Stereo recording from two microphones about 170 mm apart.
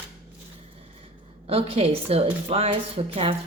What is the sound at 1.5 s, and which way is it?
Speech, 35° right (ahead or behind).